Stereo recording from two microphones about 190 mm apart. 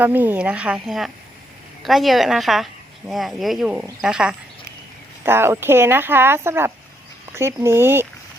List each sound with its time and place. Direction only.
0.0 s speech: 10° right (ahead or behind)